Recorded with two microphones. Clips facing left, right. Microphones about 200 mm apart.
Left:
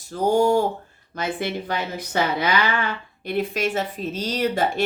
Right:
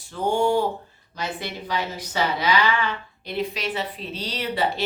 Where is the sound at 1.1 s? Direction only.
50° left (ahead or behind).